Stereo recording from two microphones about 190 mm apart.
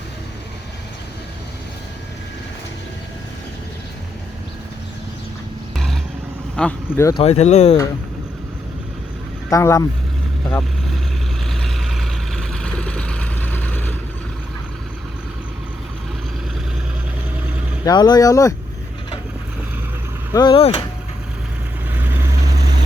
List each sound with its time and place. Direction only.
5.7 s vehicle: centre (ahead or behind)
6.6 s speech: 10° left (ahead or behind)
7.1 s speech: 30° left (ahead or behind)
9.5 s speech: 15° left (ahead or behind)
10.5 s vehicle: centre (ahead or behind)
17.8 s speech: 20° left (ahead or behind)
20.3 s speech: 25° left (ahead or behind)
21.9 s vehicle: 10° right (ahead or behind)